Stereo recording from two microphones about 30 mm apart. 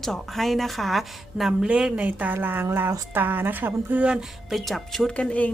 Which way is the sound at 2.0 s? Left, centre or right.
Right.